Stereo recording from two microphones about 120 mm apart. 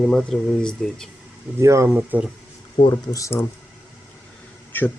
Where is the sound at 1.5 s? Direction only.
25° right (ahead or behind).